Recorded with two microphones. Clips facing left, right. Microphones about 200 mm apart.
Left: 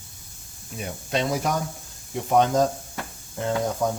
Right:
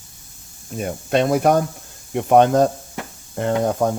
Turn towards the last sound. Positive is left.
turn(degrees=-60)  # may be behind; listen again after turning